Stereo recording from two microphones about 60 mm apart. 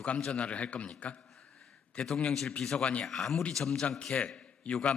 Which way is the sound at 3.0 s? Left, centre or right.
Centre.